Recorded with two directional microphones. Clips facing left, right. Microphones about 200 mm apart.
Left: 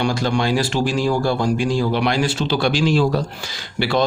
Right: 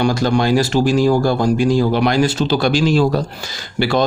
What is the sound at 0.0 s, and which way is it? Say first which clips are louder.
A man's voice: right 4 dB; 40° right (ahead or behind).